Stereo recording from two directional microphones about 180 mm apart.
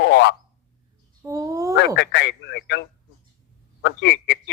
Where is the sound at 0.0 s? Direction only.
70° left (ahead or behind).